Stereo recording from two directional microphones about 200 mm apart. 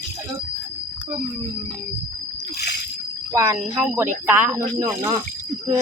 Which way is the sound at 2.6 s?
55° left (ahead or behind).